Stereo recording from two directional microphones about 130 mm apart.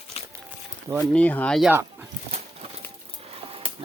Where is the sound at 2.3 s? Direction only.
50° right (ahead or behind).